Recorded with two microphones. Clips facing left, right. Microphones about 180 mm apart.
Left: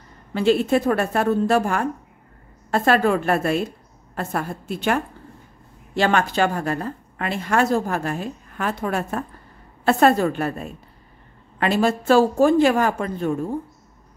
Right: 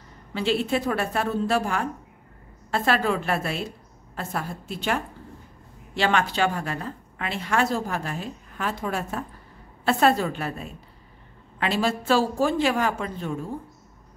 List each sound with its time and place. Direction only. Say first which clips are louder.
0.3 s a woman's voice: left 6 dB; 50° left (ahead or behind)